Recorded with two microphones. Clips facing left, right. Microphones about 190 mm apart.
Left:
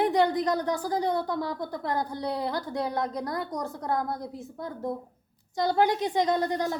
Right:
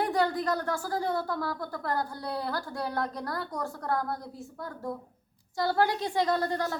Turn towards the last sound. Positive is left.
turn(degrees=20)  # may be behind; listen again after turning